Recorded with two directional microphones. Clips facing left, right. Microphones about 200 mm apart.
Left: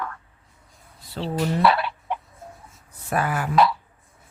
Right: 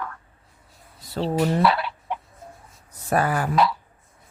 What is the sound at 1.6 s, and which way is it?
Fowl, 60° left (ahead or behind).